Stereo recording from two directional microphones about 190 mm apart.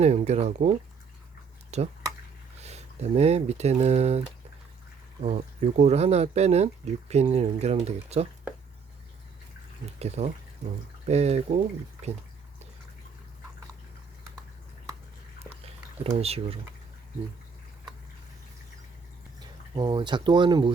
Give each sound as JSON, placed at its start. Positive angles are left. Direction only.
{"t": 0.0, "sound": "speech", "side_deg": -35}
{"t": 5.2, "sound": "speech", "side_deg": -35}
{"t": 10.0, "sound": "speech", "side_deg": -35}
{"t": 16.1, "sound": "speech", "side_deg": -30}
{"t": 19.4, "sound": "speech", "side_deg": -20}